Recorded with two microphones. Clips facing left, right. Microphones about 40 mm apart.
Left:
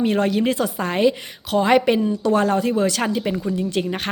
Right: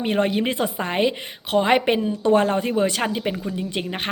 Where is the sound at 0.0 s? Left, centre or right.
Right.